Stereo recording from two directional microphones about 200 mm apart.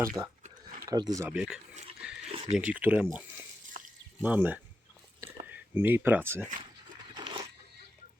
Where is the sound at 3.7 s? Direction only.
35° right (ahead or behind).